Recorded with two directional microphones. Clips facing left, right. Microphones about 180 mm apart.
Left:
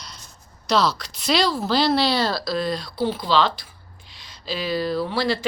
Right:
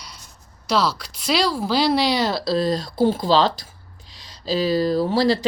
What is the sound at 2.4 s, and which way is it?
Speech, 35° right (ahead or behind).